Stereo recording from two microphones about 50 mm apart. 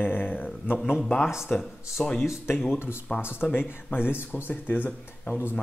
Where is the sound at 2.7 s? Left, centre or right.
Left.